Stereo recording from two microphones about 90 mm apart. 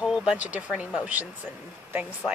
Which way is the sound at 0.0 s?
10° right (ahead or behind).